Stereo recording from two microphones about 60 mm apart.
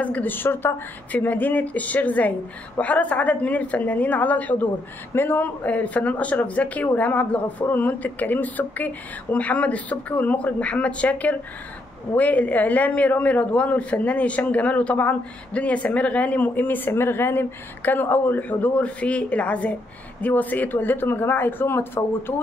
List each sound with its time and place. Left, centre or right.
0.0 s a man's voice: left